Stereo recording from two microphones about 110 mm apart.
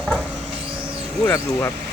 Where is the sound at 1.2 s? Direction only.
20° left (ahead or behind).